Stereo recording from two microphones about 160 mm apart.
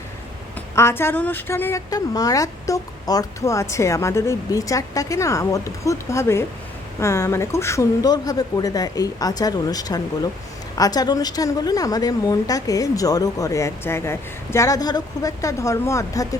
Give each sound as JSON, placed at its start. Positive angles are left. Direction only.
{"t": 0.8, "sound": "a woman's voice", "side_deg": 15}